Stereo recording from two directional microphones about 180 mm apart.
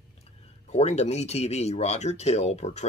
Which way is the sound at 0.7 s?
35° left (ahead or behind).